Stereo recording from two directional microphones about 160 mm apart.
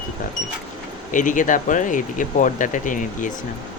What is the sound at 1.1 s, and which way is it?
Speech, 55° left (ahead or behind).